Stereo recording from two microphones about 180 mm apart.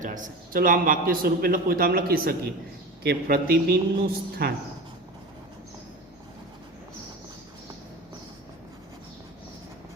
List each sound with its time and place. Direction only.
0.0 s a man's voice: 45° right (ahead or behind)